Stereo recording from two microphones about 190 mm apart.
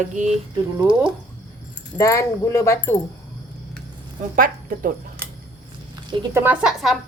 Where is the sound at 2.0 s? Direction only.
15° left (ahead or behind).